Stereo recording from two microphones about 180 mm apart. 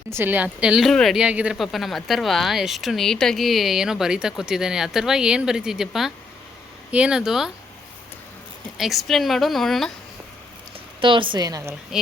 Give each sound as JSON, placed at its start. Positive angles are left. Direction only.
{"t": 0.1, "sound": "speech", "side_deg": -10}
{"t": 8.8, "sound": "speech", "side_deg": 0}
{"t": 11.0, "sound": "a woman's voice", "side_deg": -25}